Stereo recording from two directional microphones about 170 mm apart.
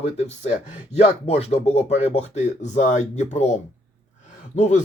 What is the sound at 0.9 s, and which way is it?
Speech, 40° left (ahead or behind).